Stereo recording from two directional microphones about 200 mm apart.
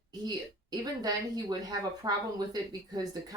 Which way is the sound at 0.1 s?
20° right (ahead or behind).